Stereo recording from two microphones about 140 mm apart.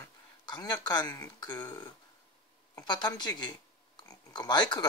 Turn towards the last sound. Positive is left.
turn(degrees=30)  # may be behind; listen again after turning